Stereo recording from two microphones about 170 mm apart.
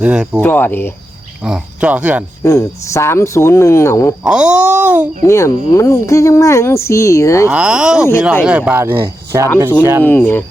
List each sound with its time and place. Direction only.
0.0 s speech: 5° right (ahead or behind)
0.4 s speech: 10° left (ahead or behind)
1.5 s speech: 5° right (ahead or behind)
2.4 s speech: 20° left (ahead or behind)
4.2 s speech: 5° right (ahead or behind)
5.2 s speech: 15° left (ahead or behind)
7.5 s speech: 5° right (ahead or behind)
10.0 s speech: 10° left (ahead or behind)